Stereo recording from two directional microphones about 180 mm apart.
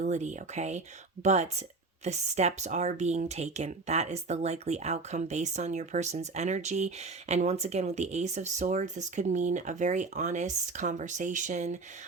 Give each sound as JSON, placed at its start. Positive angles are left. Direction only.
{"t": 0.0, "sound": "speech", "side_deg": -40}